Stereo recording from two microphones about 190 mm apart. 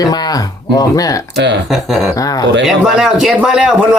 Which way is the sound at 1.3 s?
65° right (ahead or behind).